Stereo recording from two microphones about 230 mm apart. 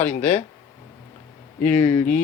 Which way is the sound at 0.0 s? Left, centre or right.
Left.